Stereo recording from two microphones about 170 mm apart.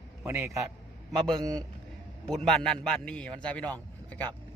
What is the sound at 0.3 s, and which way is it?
Speech, 15° right (ahead or behind).